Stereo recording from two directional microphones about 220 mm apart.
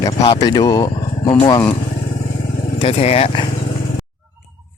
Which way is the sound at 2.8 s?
25° left (ahead or behind).